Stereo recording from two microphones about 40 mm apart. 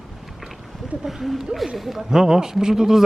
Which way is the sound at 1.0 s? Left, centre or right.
Centre.